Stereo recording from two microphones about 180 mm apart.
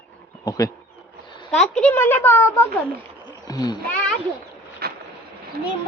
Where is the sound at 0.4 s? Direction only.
20° left (ahead or behind).